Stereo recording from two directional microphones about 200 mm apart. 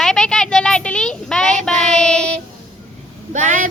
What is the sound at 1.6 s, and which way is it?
Child singing, 5° left (ahead or behind).